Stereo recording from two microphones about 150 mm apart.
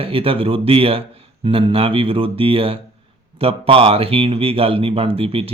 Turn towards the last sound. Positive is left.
turn(degrees=-40)  # may be behind; listen again after turning